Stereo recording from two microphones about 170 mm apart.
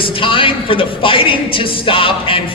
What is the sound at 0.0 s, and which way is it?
Speech, 30° left (ahead or behind).